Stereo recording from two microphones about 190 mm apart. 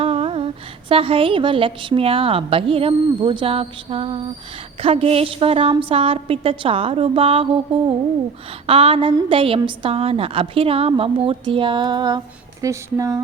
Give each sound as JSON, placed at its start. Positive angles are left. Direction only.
{"t": 0.0, "sound": "a woman's voice", "side_deg": -30}